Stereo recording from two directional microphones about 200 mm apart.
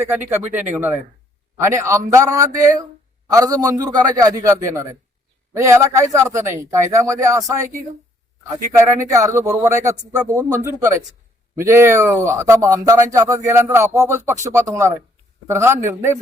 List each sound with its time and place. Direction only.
0.3 s speech: 10° right (ahead or behind)
9.0 s speech: 15° right (ahead or behind)